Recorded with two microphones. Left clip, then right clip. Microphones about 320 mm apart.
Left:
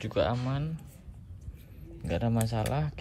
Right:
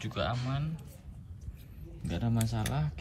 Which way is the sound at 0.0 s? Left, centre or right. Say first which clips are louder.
Left 6 dB; centre.